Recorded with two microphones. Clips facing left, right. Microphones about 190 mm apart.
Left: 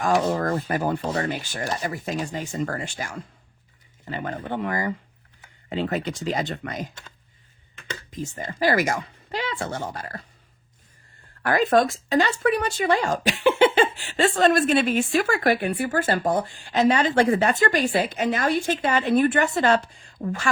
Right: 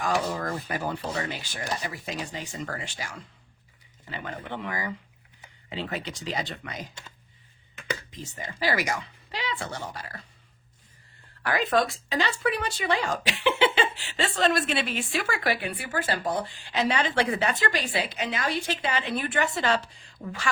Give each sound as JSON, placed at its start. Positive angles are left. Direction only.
{"t": 0.0, "sound": "speech", "side_deg": 50}
{"t": 8.1, "sound": "speech", "side_deg": 50}
{"t": 11.4, "sound": "speech", "side_deg": 50}